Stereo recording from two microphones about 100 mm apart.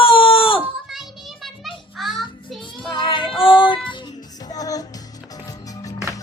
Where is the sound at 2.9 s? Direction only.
55° left (ahead or behind).